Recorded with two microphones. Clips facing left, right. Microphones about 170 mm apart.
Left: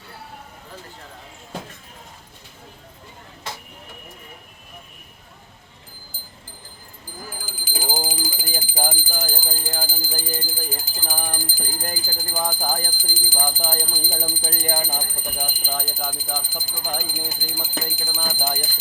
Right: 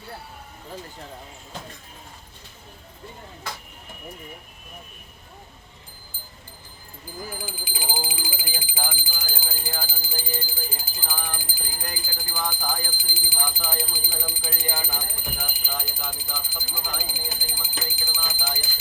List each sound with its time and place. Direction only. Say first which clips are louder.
7.4 s alarm: left 3 dB; 45° left (ahead or behind)
10.2 s speech: left 1 dB; 45° left (ahead or behind)